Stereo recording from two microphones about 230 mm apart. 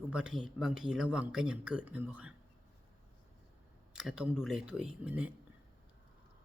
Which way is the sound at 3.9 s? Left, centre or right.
Centre.